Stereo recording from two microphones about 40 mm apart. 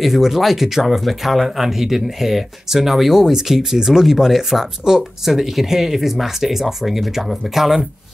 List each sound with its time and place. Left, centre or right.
0.0 s speech: centre